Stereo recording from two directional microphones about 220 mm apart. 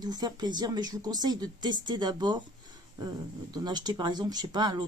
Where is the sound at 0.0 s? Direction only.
20° right (ahead or behind).